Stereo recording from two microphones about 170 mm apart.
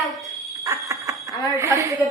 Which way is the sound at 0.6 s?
20° right (ahead or behind).